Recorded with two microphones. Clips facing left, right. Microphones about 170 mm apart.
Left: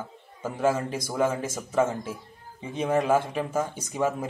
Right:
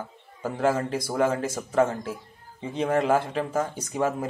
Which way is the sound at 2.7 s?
15° left (ahead or behind).